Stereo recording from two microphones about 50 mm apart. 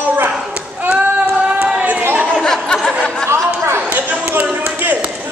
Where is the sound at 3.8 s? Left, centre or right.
Right.